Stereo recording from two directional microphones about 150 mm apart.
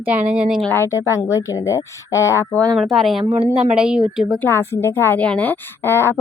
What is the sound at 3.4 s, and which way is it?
Speech, 40° right (ahead or behind).